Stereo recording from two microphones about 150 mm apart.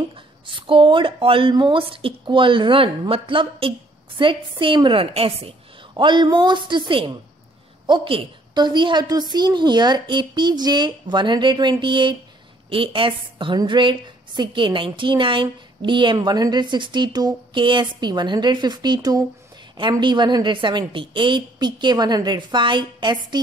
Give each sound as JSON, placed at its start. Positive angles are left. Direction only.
{"t": 0.5, "sound": "a woman's voice", "side_deg": -35}